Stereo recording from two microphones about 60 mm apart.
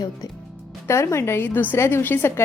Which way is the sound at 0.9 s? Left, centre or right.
Left.